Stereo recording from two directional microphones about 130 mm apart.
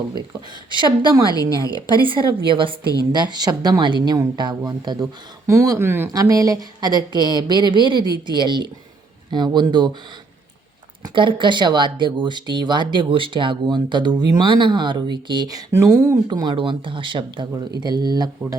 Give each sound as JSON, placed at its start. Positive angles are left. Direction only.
{"t": 0.8, "sound": "speech", "side_deg": -35}
{"t": 1.3, "sound": "a woman's voice", "side_deg": 30}
{"t": 1.9, "sound": "a woman's voice", "side_deg": -40}
{"t": 7.9, "sound": "a woman's voice", "side_deg": 30}
{"t": 8.3, "sound": "speech", "side_deg": -35}
{"t": 11.0, "sound": "speech", "side_deg": -40}
{"t": 16.2, "sound": "speech", "side_deg": -35}